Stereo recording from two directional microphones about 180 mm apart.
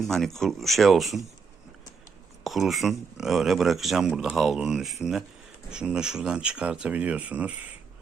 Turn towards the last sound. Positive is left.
turn(degrees=-10)  # may be behind; listen again after turning